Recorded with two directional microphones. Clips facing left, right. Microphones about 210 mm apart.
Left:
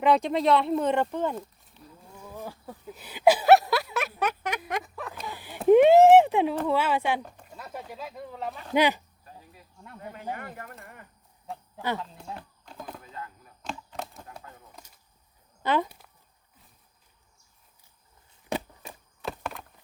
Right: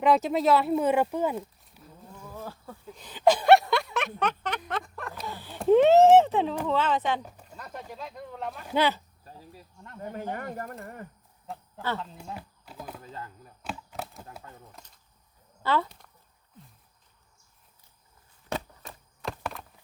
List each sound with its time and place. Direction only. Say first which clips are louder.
0.0 s speech: even; centre (ahead or behind)
2.1 s a sound: left 1 dB; 15° left (ahead or behind)
6.7 s speech: left 1 dB; 10° left (ahead or behind)
7.2 s speech: left 2 dB; 5° right (ahead or behind)
7.4 s speech: left 1 dB; 5° left (ahead or behind)
8.7 s speech: left 2 dB; 15° left (ahead or behind)
10.0 s speech: right 3 dB; 40° right (ahead or behind)
11.8 s speech: left 1 dB; 15° left (ahead or behind)
12.2 s speech: even; 5° right (ahead or behind)
13.6 s a sound: even; 5° right (ahead or behind)
15.6 s speech: left 1 dB; 15° left (ahead or behind)
18.4 s a sound: left 2 dB; 15° left (ahead or behind)